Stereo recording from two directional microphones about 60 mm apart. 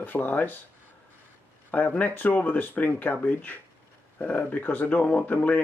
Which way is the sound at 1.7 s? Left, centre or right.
Left.